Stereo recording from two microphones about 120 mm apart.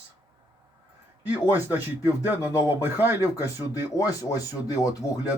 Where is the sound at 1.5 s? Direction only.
15° right (ahead or behind).